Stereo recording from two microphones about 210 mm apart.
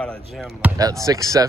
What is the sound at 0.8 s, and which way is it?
Speech, 15° right (ahead or behind).